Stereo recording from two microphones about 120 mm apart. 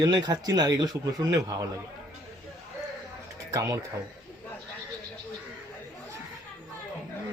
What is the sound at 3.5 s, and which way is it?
Speech, 30° right (ahead or behind).